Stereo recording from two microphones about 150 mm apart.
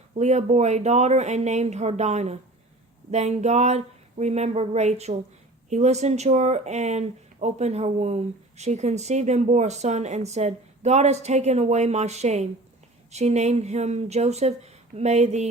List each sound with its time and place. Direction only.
0.1 s speech: 50° right (ahead or behind)